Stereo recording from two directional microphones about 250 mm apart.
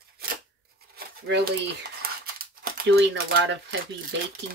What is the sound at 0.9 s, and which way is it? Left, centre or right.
Crumpling, right.